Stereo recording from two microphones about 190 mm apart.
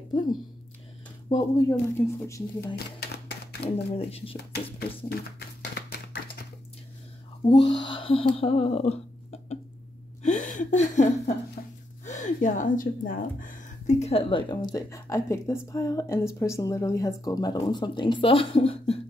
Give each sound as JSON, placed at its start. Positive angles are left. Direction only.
{"t": 1.3, "sound": "speech", "side_deg": 15}
{"t": 2.7, "sound": "typewriter", "side_deg": 55}
{"t": 3.9, "sound": "speech", "side_deg": 30}
{"t": 4.5, "sound": "speech", "side_deg": 60}
{"t": 5.8, "sound": "a sound", "side_deg": 55}
{"t": 7.7, "sound": "a sound", "side_deg": 25}
{"t": 11.6, "sound": "speech", "side_deg": 45}